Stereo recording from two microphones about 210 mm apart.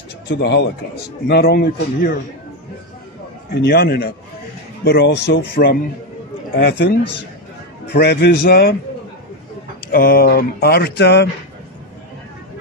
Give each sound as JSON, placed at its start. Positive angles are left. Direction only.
{"t": 0.3, "sound": "speech", "side_deg": 55}
{"t": 3.5, "sound": "speech", "side_deg": 50}
{"t": 9.8, "sound": "speech", "side_deg": 45}